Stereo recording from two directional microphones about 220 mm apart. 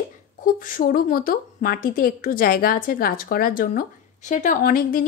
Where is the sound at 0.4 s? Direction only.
40° left (ahead or behind).